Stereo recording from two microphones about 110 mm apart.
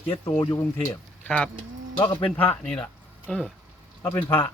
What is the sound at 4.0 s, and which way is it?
Speech, 20° left (ahead or behind).